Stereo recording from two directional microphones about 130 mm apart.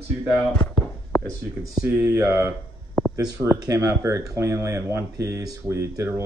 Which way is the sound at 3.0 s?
20° left (ahead or behind).